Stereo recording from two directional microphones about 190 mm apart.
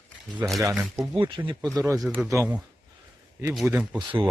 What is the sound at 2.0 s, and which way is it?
Speech, centre (ahead or behind).